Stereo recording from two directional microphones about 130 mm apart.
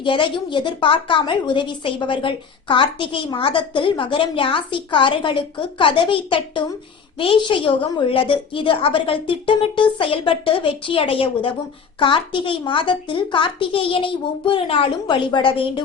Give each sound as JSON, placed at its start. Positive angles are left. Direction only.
{"t": 0.0, "sound": "a woman's voice", "side_deg": 40}